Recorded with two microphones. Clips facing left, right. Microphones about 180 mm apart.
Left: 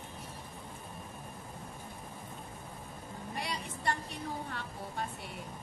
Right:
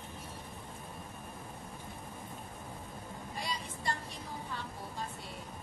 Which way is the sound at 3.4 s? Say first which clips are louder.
Left 1 dB; 65° left (ahead or behind).